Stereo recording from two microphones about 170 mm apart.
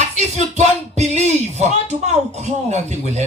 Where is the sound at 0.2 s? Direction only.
40° right (ahead or behind).